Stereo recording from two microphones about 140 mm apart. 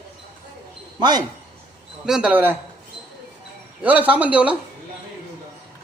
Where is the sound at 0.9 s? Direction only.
30° right (ahead or behind).